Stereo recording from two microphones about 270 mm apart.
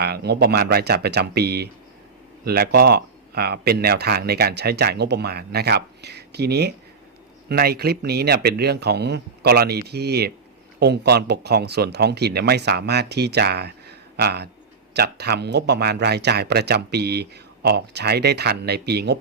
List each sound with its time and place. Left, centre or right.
0.0 s speech: right